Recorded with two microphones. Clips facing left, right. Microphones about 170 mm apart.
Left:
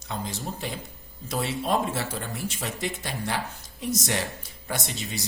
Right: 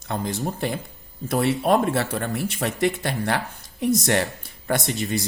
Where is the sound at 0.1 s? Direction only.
55° right (ahead or behind).